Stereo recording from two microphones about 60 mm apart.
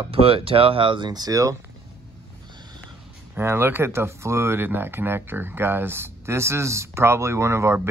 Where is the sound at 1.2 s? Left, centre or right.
Right.